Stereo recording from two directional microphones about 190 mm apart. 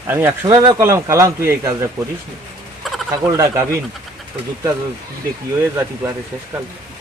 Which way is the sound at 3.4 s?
15° right (ahead or behind).